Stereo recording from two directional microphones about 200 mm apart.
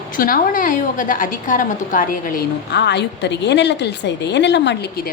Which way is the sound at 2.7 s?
60° left (ahead or behind).